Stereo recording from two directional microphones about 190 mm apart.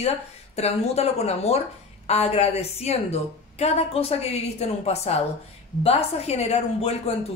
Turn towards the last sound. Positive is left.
turn(degrees=35)  # may be behind; listen again after turning